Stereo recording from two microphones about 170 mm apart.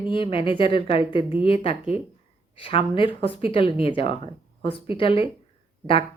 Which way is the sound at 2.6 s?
30° left (ahead or behind).